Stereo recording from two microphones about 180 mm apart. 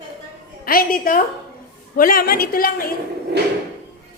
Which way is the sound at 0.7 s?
55° left (ahead or behind).